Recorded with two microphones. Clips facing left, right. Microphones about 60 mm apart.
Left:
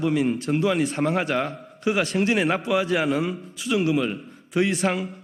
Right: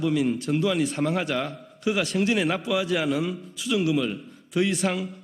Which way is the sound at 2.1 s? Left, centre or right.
Left.